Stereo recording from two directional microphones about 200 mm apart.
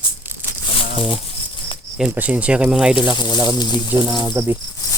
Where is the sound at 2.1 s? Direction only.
10° right (ahead or behind).